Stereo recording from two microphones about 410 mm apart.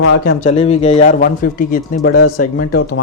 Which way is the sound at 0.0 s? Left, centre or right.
Left.